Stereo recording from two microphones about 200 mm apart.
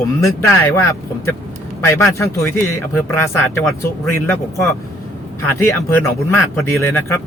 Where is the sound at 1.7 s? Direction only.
15° left (ahead or behind).